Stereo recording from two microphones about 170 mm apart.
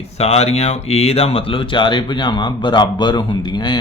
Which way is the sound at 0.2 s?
40° left (ahead or behind).